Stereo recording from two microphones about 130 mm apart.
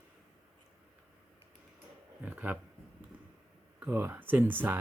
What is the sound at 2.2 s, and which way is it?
Speech, 10° right (ahead or behind).